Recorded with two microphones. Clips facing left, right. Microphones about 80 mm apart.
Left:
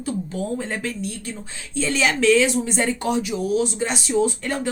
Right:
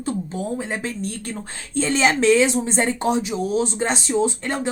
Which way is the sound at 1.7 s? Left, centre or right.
Right.